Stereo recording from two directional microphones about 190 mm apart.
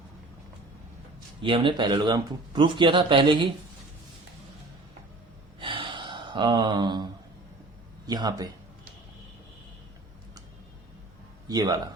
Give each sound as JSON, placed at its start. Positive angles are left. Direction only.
{"t": 1.4, "sound": "speech", "side_deg": -25}
{"t": 5.5, "sound": "gasp", "side_deg": -25}
{"t": 8.0, "sound": "speech", "side_deg": -20}
{"t": 11.4, "sound": "speech", "side_deg": -20}